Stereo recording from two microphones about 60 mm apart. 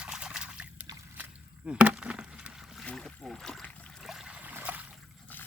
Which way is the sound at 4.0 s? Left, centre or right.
Centre.